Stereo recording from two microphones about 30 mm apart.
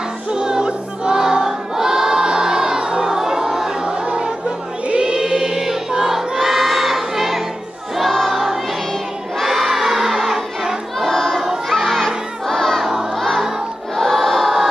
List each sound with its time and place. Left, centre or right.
0.3 s music: right
1.1 s choir: centre
2.2 s music: right
3.2 s a sound: centre
3.8 s music: right
5.0 s choir: centre
9.5 s crowd: centre
11.1 s crowd: centre
13.9 s choir: centre